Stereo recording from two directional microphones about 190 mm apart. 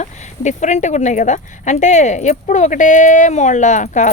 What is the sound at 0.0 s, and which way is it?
Speech, 40° left (ahead or behind).